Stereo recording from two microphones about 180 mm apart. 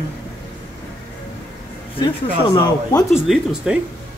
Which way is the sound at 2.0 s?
20° left (ahead or behind).